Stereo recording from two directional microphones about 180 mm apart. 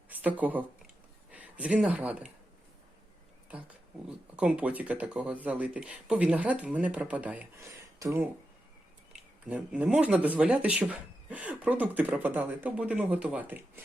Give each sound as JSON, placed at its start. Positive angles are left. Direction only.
{"t": 0.1, "sound": "speech", "side_deg": -10}
{"t": 4.4, "sound": "speech", "side_deg": -5}
{"t": 9.5, "sound": "speech", "side_deg": -10}